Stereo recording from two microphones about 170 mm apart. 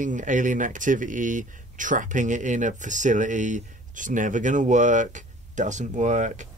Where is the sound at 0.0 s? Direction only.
50° right (ahead or behind).